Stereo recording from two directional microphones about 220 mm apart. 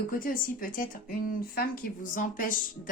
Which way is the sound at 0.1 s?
40° left (ahead or behind).